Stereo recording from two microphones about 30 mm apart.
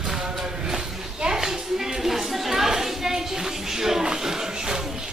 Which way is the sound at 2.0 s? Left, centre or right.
Centre.